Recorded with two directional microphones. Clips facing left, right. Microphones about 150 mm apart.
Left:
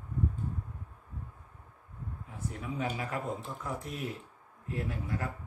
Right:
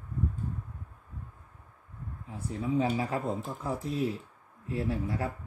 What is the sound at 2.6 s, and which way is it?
A man's voice, 30° right (ahead or behind).